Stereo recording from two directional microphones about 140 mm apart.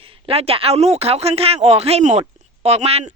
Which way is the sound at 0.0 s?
45° right (ahead or behind).